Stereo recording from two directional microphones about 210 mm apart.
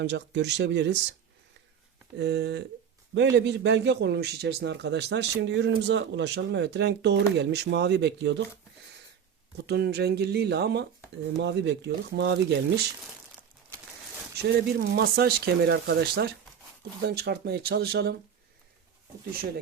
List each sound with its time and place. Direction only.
0.0 s a man's voice: 55° right (ahead or behind)
2.1 s a man's voice: 55° right (ahead or behind)
9.6 s a man's voice: 50° right (ahead or behind)
14.8 s speech: 50° right (ahead or behind)